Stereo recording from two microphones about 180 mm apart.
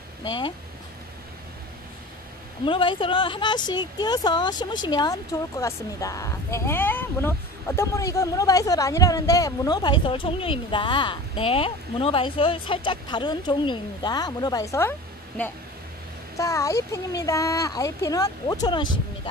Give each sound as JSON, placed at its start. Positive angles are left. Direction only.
{"t": 0.2, "sound": "speech", "side_deg": 25}
{"t": 2.6, "sound": "speech", "side_deg": 30}